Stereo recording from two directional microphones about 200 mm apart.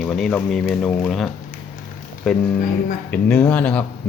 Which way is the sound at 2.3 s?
5° left (ahead or behind).